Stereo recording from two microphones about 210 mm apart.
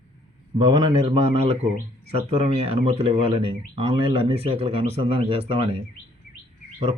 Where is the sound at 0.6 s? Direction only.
20° right (ahead or behind).